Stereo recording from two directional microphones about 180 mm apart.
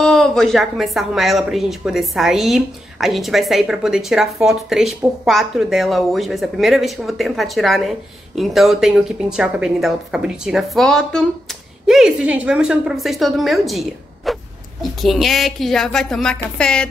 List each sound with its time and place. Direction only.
0.0 s a woman's voice: 5° left (ahead or behind)